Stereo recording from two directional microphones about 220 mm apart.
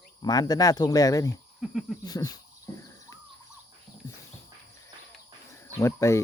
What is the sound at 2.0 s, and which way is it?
Crow, 15° left (ahead or behind).